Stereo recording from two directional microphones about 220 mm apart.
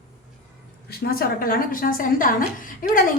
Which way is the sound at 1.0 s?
40° left (ahead or behind).